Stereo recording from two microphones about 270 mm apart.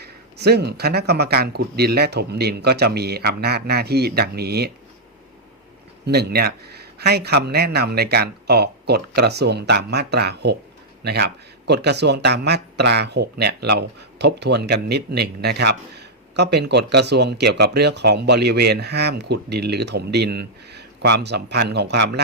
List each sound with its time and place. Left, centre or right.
0.0 s speech: right
6.1 s speech: right